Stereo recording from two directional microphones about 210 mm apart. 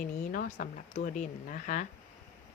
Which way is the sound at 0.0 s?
40° left (ahead or behind).